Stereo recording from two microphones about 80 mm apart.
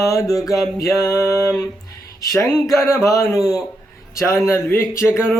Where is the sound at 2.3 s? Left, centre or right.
Left.